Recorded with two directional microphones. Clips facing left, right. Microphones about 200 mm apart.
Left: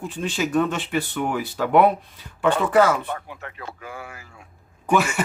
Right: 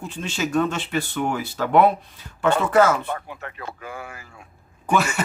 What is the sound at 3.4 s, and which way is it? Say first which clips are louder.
Speech: right 2 dB; 50° right (ahead or behind).